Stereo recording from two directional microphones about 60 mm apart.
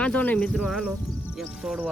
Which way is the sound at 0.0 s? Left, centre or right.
Left.